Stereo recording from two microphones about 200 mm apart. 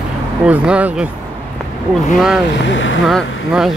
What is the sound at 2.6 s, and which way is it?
Speech, 65° left (ahead or behind).